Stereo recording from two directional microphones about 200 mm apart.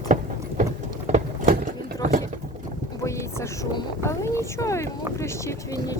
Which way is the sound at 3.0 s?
15° left (ahead or behind).